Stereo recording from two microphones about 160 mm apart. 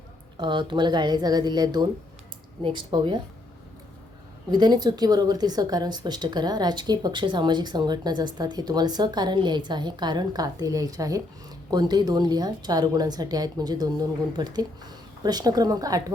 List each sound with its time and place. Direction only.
0.3 s a woman's voice: 30° right (ahead or behind)
4.5 s a woman's voice: 25° right (ahead or behind)